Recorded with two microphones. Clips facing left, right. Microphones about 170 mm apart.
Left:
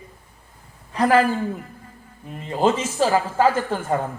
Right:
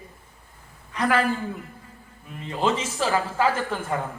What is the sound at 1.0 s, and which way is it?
Speech, 35° left (ahead or behind).